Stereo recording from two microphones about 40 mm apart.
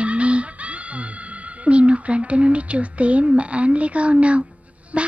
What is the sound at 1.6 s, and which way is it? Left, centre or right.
Speech, right.